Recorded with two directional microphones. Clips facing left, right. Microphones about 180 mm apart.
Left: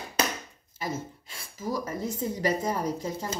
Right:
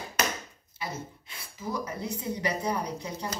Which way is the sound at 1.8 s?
45° left (ahead or behind).